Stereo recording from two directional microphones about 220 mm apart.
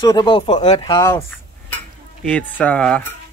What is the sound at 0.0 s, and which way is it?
Speech, 20° left (ahead or behind).